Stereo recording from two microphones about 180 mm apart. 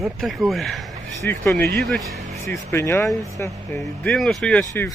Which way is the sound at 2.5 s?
45° right (ahead or behind).